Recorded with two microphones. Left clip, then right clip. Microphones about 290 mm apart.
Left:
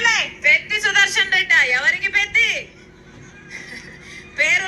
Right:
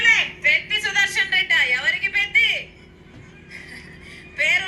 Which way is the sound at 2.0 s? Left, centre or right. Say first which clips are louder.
Left 1 dB; left.